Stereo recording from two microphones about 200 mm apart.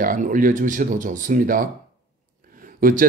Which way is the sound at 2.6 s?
45° right (ahead or behind).